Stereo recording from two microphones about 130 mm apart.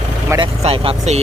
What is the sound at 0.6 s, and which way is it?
Speech, 50° right (ahead or behind).